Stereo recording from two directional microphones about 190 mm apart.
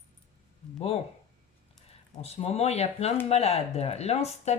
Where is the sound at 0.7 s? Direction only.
35° left (ahead or behind).